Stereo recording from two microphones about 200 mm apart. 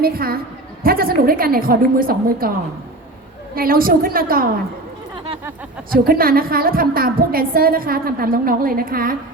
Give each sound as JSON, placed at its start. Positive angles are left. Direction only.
{"t": 0.0, "sound": "a woman's voice", "side_deg": -50}
{"t": 3.5, "sound": "a woman's voice", "side_deg": -45}
{"t": 5.9, "sound": "a woman's voice", "side_deg": -45}